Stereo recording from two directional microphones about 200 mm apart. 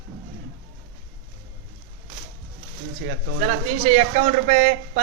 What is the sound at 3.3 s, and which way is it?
Speech, 35° right (ahead or behind).